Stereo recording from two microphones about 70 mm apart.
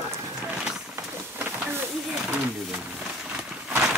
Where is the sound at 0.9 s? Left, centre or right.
Right.